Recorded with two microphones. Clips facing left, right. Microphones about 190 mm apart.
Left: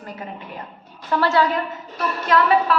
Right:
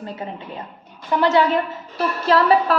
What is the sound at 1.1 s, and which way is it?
Speech, 20° right (ahead or behind).